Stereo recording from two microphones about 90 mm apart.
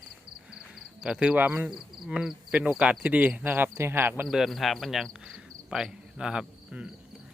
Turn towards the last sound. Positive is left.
turn(degrees=-10)  # may be behind; listen again after turning